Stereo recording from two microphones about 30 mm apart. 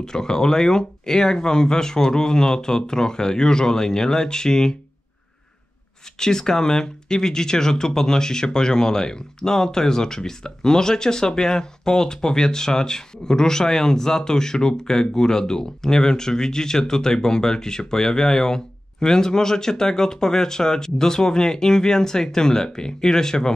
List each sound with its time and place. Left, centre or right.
0.0 s speech: centre
6.1 s speech: centre